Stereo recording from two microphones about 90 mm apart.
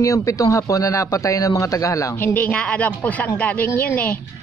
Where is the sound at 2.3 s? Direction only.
15° left (ahead or behind).